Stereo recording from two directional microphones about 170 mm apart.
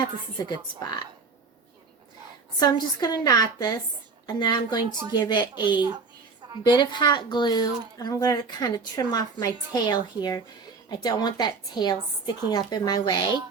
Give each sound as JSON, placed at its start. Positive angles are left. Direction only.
{"t": 0.4, "sound": "speech", "side_deg": 25}
{"t": 2.6, "sound": "speech", "side_deg": 25}